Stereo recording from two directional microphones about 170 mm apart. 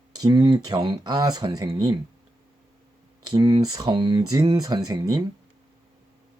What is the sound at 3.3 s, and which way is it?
Speech, 25° right (ahead or behind).